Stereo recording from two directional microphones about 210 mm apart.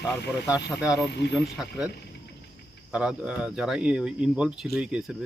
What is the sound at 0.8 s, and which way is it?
Speech, 5° right (ahead or behind).